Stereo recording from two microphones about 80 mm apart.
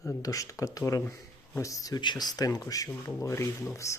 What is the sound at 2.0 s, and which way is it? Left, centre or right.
Speech, left.